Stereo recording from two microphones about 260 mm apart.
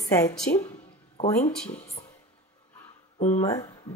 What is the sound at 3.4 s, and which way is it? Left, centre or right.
Speech, centre.